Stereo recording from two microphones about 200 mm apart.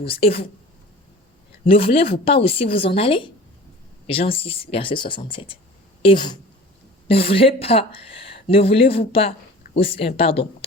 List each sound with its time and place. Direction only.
0.0 s speech: 30° left (ahead or behind)
1.6 s a woman's voice: 30° left (ahead or behind)